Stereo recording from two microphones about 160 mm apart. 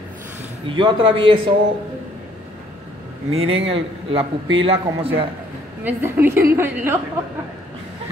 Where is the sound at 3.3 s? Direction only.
35° right (ahead or behind).